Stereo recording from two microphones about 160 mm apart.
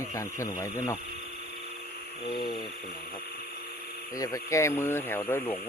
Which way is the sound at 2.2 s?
30° left (ahead or behind).